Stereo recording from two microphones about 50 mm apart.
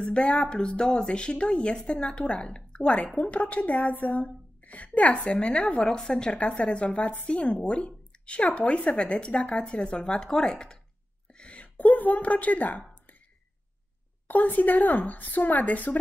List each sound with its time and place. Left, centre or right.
0.0 s speech: left
5.8 s a woman's voice: centre
6.3 s speech: left
14.2 s a woman's voice: left